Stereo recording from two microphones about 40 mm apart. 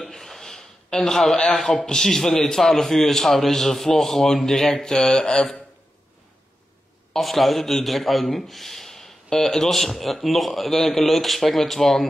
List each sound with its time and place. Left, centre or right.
0.0 s gasp: centre
1.0 s a man's voice: centre
7.2 s a man's voice: centre